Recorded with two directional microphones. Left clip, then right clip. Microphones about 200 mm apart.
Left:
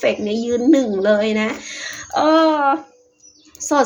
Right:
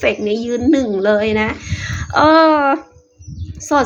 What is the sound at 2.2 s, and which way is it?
Wail, 40° right (ahead or behind).